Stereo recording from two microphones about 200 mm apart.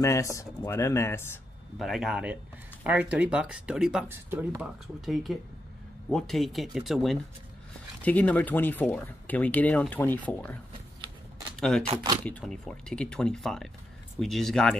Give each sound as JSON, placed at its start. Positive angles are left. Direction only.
{"t": 0.0, "sound": "speech", "side_deg": 15}
{"t": 1.8, "sound": "speech", "side_deg": 0}
{"t": 11.8, "sound": "speech", "side_deg": -25}
{"t": 12.3, "sound": "speech", "side_deg": 5}